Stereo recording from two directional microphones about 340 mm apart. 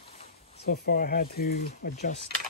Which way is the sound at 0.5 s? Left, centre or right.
Left.